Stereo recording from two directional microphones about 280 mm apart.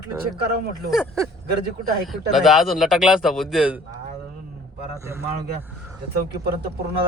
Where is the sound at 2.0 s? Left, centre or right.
Centre.